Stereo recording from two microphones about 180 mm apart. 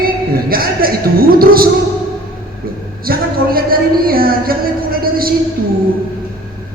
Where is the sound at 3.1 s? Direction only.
55° right (ahead or behind).